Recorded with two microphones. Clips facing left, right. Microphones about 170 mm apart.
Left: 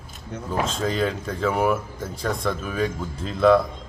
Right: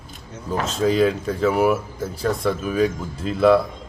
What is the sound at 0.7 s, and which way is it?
Speech, 5° right (ahead or behind).